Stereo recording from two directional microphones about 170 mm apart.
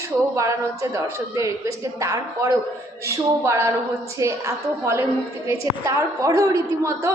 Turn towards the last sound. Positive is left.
turn(degrees=-20)  # may be behind; listen again after turning